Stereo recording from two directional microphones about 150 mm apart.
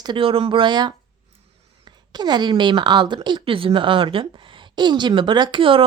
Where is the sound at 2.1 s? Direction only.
30° right (ahead or behind).